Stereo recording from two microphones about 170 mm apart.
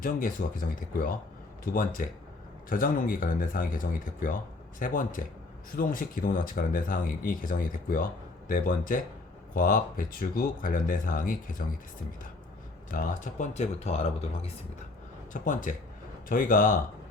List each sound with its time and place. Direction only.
0.0 s speech: 55° left (ahead or behind)
12.9 s speech: 50° left (ahead or behind)
15.3 s speech: 50° left (ahead or behind)